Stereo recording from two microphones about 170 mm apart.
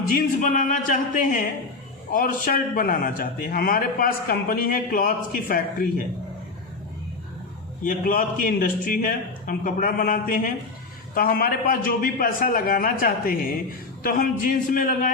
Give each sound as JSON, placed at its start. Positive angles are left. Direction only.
{"t": 0.1, "sound": "a man's voice", "side_deg": 55}
{"t": 7.9, "sound": "a man's voice", "side_deg": 55}